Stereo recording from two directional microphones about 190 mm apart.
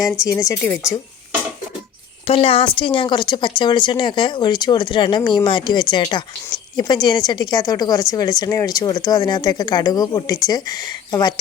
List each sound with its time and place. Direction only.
0.0 s speech: 15° left (ahead or behind)
2.2 s speech: 30° left (ahead or behind)